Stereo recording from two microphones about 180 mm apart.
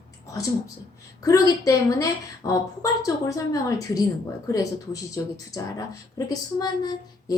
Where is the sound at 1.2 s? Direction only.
20° left (ahead or behind).